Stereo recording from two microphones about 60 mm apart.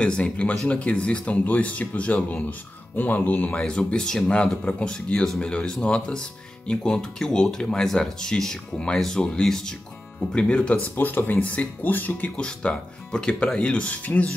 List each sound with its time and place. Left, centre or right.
0.0 s speech: centre
3.0 s speech: left
11.0 s speech: left
12.4 s speech: centre